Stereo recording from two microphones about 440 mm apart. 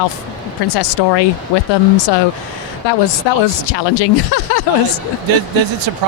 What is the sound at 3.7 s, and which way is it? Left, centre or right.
Speech, left.